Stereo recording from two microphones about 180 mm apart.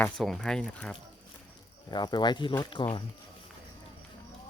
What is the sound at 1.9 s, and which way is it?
Speech, 25° left (ahead or behind).